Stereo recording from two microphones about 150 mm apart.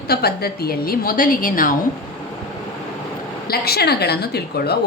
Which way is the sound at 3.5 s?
90° left.